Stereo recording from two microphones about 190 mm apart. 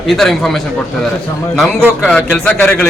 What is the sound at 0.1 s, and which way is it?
Speech, centre (ahead or behind).